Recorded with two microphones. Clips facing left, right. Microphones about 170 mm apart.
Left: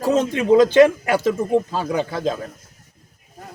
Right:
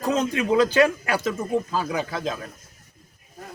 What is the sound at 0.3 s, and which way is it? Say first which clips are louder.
A man's voice: left 6 dB; 25° left (ahead or behind).